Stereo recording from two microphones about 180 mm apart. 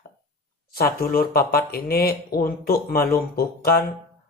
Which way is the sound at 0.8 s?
55° left (ahead or behind).